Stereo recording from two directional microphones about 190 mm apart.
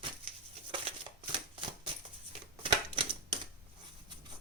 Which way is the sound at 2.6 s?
25° right (ahead or behind).